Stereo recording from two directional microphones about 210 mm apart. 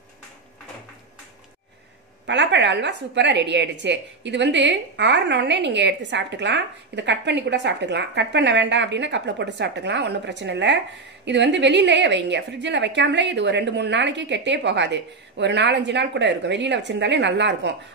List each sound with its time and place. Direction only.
2.2 s a woman's voice: 55° right (ahead or behind)